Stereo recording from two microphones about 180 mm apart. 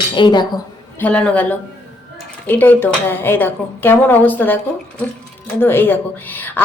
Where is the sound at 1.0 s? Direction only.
5° left (ahead or behind).